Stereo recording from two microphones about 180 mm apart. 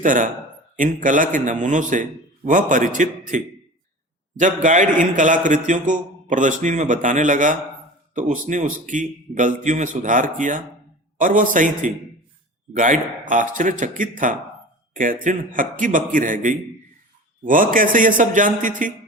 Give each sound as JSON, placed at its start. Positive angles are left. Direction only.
{"t": 0.0, "sound": "a man's voice", "side_deg": -45}